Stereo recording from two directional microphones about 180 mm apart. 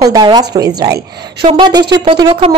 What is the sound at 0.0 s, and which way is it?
A woman's voice, 20° right (ahead or behind).